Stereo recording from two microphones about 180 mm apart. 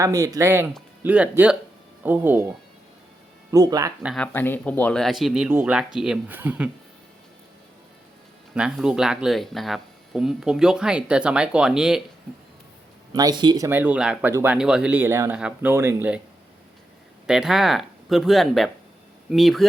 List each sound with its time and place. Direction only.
0.0 s speech: 15° right (ahead or behind)
4.0 s speech: 5° left (ahead or behind)
8.5 s speech: 5° right (ahead or behind)
13.1 s speech: 25° right (ahead or behind)
13.7 s speech: 10° right (ahead or behind)
17.2 s speech: 5° right (ahead or behind)